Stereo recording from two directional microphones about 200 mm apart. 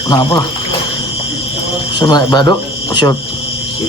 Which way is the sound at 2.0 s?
20° left (ahead or behind).